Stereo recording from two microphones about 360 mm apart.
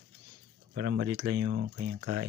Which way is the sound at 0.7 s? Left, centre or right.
Right.